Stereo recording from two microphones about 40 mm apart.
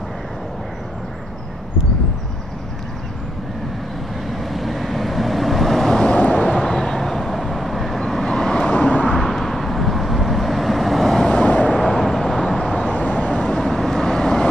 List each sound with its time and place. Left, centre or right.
4.3 s vehicle: centre
6.1 s vehicle: left
6.5 s vehicle: centre
8.6 s vehicle: left
9.1 s vehicle: centre
11.4 s vehicle: left
11.9 s vehicle: centre
12.9 s vehicle: left
13.3 s vehicle: centre